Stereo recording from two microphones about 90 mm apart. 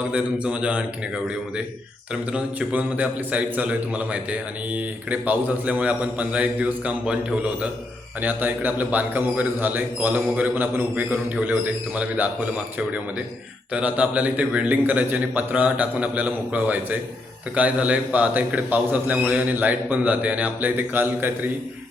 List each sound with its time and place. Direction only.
0.1 s a man's voice: 10° right (ahead or behind)